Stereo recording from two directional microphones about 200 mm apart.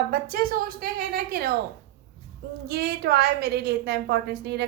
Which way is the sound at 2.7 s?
50° right (ahead or behind).